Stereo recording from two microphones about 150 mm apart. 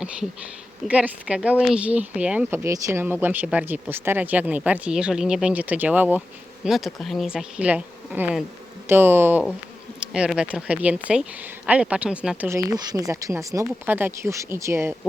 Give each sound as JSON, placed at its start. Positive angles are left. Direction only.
{"t": 0.9, "sound": "speech", "side_deg": -10}
{"t": 12.5, "sound": "speech", "side_deg": -25}